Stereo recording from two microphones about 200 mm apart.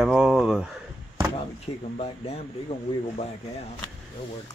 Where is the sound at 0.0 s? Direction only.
Centre (ahead or behind).